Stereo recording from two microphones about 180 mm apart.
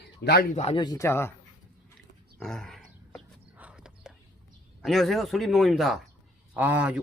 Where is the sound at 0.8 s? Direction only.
20° left (ahead or behind).